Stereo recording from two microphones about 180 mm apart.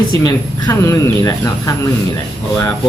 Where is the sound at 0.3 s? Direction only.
20° left (ahead or behind).